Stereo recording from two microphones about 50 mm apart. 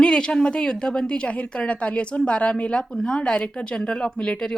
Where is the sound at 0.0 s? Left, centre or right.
Centre.